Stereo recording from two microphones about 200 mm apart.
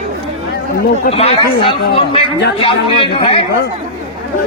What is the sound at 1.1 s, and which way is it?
Speech, 30° left (ahead or behind).